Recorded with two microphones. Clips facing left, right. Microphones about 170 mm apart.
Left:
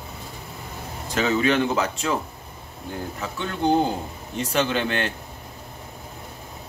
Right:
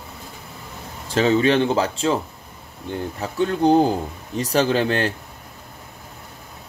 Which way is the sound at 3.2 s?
35° right (ahead or behind).